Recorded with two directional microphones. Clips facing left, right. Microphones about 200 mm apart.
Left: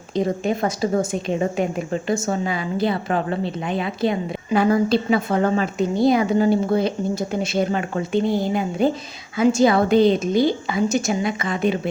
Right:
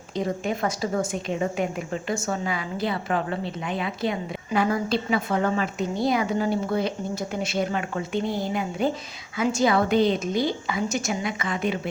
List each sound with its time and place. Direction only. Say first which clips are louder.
0.1 s a woman's voice: left 5 dB; 25° left (ahead or behind)